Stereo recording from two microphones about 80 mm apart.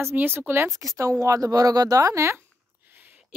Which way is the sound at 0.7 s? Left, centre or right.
Right.